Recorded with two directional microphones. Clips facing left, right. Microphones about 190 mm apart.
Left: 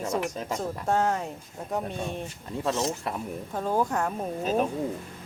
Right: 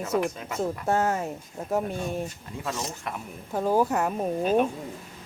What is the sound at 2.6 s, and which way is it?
Speech, 30° left (ahead or behind).